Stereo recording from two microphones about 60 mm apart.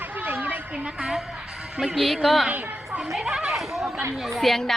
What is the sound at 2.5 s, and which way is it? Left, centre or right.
Speech, right.